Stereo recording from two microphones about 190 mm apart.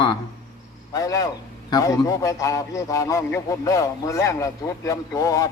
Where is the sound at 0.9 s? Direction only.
20° left (ahead or behind).